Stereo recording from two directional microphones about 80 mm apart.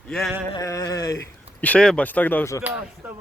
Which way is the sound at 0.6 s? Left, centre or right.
Left.